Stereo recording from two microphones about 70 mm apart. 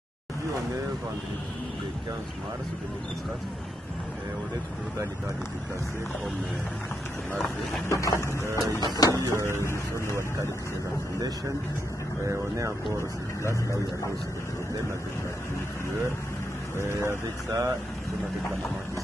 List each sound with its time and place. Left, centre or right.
7.9 s printer: left
8.5 s speech: right
8.7 s printer: left
9.3 s speech: right
12.3 s speech: right
16.8 s speech: right